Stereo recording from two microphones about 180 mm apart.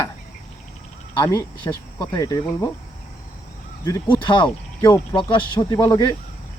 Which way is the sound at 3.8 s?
20° left (ahead or behind).